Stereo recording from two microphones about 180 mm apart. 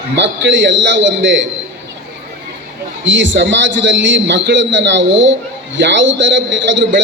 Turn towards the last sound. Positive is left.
turn(degrees=-90)